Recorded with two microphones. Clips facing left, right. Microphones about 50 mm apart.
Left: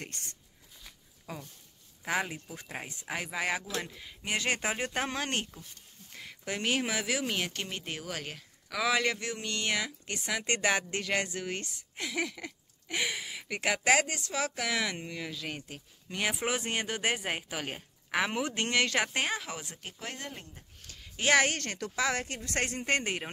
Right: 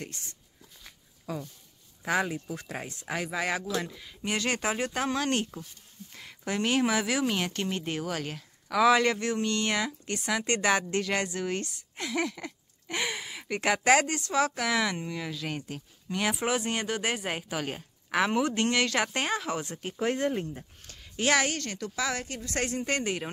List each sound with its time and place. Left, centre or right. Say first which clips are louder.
0.0 s speech: right 2 dB; left
1.3 s speech: right 7 dB; centre
6.1 s speech: right 5 dB; centre
10.4 s speech: right 2 dB; centre
20.0 s speech: right 14 dB; right
20.8 s a sound: right 1 dB; centre
21.2 s speech: even; left
21.5 s speech: right 1 dB; left
21.9 s speech: left 1 dB; left